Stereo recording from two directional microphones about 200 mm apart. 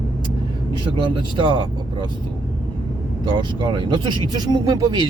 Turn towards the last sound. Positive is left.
turn(degrees=-20)  # may be behind; listen again after turning